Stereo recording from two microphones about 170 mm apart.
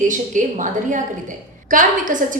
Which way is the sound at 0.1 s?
50° right (ahead or behind).